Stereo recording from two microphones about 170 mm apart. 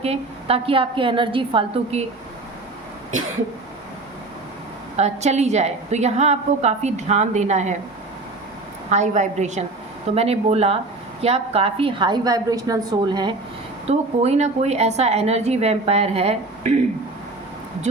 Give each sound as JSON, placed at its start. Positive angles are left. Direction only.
{"t": 0.0, "sound": "a woman's voice", "side_deg": -35}
{"t": 4.9, "sound": "a woman's voice", "side_deg": -40}
{"t": 8.9, "sound": "a woman's voice", "side_deg": -45}
{"t": 13.8, "sound": "a woman's voice", "side_deg": -40}